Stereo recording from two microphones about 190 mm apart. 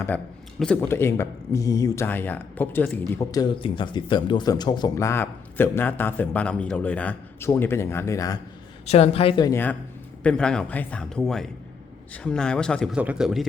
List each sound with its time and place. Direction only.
0.6 s speech: 10° left (ahead or behind)
8.9 s a woman's voice: 30° left (ahead or behind)
10.2 s a man's voice: 5° left (ahead or behind)